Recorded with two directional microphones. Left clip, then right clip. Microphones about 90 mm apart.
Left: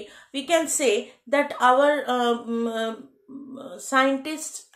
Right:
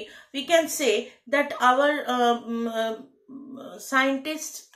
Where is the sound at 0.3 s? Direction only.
40° left (ahead or behind).